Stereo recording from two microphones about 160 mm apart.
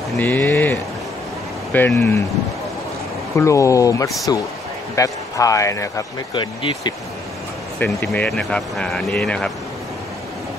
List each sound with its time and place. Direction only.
0.2 s speech: 10° left (ahead or behind)
3.3 s a man's voice: 20° left (ahead or behind)
6.3 s speech: 30° left (ahead or behind)
7.8 s speech: 10° left (ahead or behind)